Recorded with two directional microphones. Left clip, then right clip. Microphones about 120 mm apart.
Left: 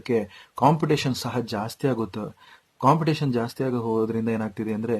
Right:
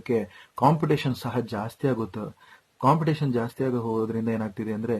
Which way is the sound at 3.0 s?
20° left (ahead or behind).